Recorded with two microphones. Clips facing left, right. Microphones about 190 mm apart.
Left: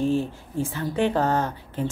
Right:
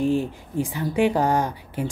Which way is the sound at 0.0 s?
15° right (ahead or behind).